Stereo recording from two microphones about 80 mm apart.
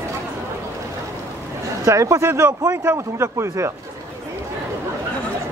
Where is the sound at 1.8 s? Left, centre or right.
Right.